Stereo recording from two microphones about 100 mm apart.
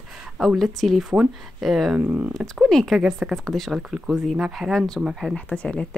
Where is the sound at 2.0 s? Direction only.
20° right (ahead or behind).